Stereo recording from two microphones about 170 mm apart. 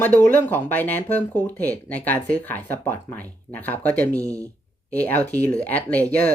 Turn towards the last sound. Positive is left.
turn(degrees=10)  # may be behind; listen again after turning